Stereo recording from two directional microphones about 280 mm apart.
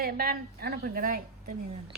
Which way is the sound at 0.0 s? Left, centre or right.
Right.